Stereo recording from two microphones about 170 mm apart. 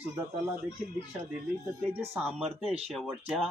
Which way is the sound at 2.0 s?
10° right (ahead or behind).